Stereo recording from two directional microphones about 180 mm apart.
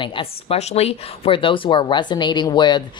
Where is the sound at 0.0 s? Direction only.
30° left (ahead or behind).